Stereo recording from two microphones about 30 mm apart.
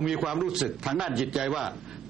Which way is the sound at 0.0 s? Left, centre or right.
Centre.